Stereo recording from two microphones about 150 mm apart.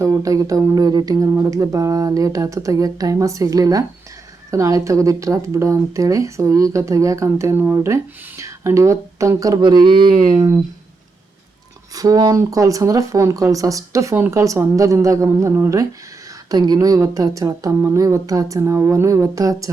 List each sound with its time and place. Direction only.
0.0 s speech: 20° right (ahead or behind)
11.9 s speech: 25° right (ahead or behind)